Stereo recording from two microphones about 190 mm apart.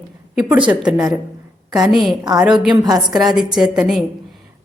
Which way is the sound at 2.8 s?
20° right (ahead or behind).